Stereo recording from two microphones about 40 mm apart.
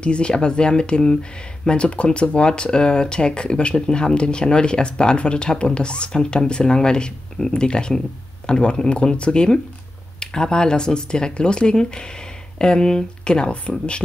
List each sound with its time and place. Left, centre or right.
0.0 s speech: left